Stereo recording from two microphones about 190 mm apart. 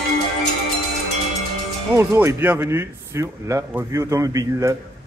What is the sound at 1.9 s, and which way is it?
Speech, 10° right (ahead or behind).